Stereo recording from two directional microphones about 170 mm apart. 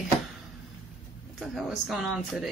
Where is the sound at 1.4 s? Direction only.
Centre (ahead or behind).